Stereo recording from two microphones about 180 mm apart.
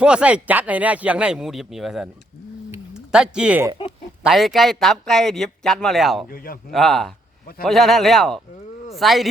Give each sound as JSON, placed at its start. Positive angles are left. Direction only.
{"t": 0.0, "sound": "speech", "side_deg": -5}
{"t": 6.2, "sound": "a man's voice", "side_deg": 55}
{"t": 6.7, "sound": "speech", "side_deg": 0}